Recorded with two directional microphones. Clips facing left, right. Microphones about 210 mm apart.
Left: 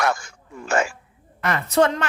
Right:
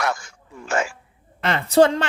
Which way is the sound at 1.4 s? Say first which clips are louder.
Right 3 dB; 30° right (ahead or behind).